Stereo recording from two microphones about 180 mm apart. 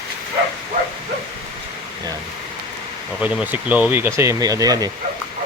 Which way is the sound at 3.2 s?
10° right (ahead or behind).